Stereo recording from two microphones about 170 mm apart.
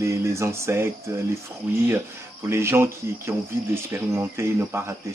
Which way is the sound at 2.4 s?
15° right (ahead or behind).